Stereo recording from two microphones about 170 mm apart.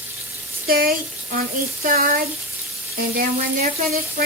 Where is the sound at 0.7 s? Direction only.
60° right (ahead or behind).